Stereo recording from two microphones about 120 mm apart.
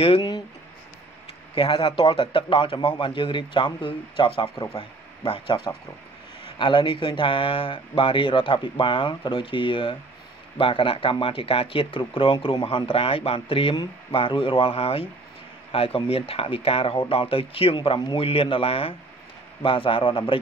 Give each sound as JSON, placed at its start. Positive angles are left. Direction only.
{"t": 0.0, "sound": "speech", "side_deg": 50}
{"t": 1.5, "sound": "speech", "side_deg": 45}
{"t": 6.6, "sound": "speech", "side_deg": 45}